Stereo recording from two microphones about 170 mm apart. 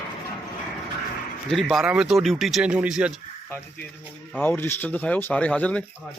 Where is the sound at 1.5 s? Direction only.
Centre (ahead or behind).